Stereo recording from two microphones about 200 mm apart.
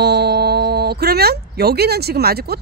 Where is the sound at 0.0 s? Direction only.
55° right (ahead or behind).